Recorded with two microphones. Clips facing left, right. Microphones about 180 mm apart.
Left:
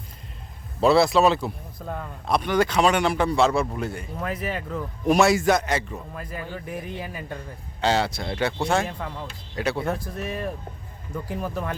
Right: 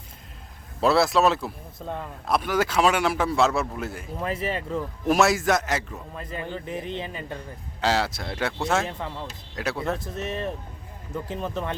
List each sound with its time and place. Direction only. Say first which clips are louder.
0.8 s speech: left 2 dB; centre (ahead or behind)
4.2 s speech: right 1 dB; 30° right (ahead or behind)
4.8 s speech: left 2 dB; centre (ahead or behind)
6.2 s speech: right 1 dB; 20° right (ahead or behind)
6.9 s speech: right 1 dB; 10° left (ahead or behind)
10.0 s speech: even; 25° right (ahead or behind)